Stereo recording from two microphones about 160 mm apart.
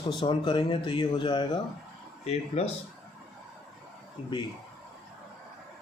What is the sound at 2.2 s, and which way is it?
Speech, 40° left (ahead or behind).